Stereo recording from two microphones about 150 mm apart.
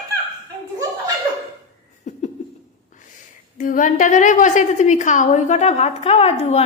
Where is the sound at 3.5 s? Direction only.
60° left (ahead or behind).